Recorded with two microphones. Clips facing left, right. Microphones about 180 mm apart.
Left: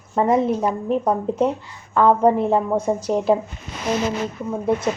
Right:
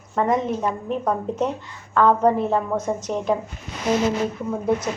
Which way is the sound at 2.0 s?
10° left (ahead or behind).